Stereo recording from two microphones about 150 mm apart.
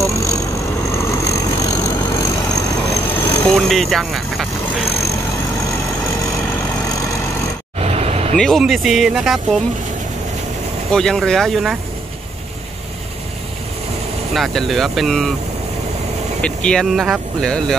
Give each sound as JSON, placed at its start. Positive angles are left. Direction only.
{"t": 0.0, "sound": "vehicle", "side_deg": 20}
{"t": 3.4, "sound": "vehicle", "side_deg": 5}
{"t": 6.4, "sound": "vehicle", "side_deg": 10}
{"t": 7.8, "sound": "vehicle", "side_deg": -45}
{"t": 8.4, "sound": "speech", "side_deg": 0}
{"t": 10.9, "sound": "speech", "side_deg": 5}
{"t": 14.3, "sound": "speech", "side_deg": 0}
{"t": 16.3, "sound": "speech", "side_deg": 5}